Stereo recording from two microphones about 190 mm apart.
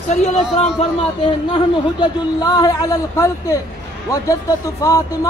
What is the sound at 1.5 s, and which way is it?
Speech, 20° left (ahead or behind).